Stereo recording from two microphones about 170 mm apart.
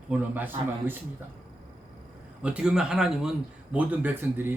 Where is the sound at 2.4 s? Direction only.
5° right (ahead or behind).